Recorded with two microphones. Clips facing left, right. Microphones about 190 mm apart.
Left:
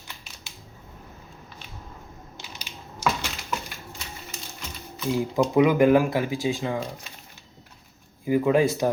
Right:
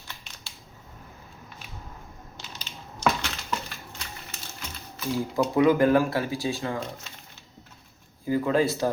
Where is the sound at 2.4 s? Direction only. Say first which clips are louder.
Even; 10° left (ahead or behind).